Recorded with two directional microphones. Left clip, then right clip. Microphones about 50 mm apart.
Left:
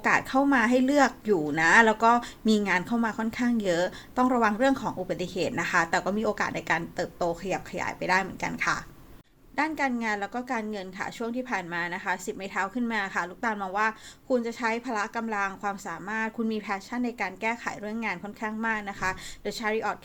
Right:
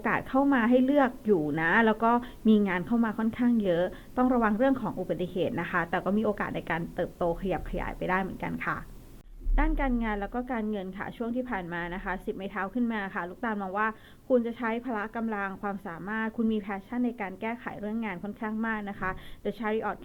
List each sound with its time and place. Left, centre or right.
0.0 s speech: left
0.8 s a woman's voice: left
3.0 s speech: centre
4.7 s a woman's voice: left
6.5 s speech: left
7.4 s speech: centre
7.8 s a woman's voice: centre
8.2 s a woman's voice: left
10.5 s a woman's voice: left
13.5 s a woman's voice: left
14.3 s speech: left
14.6 s a woman's voice: left
19.0 s a woman's voice: left
19.6 s a woman's voice: left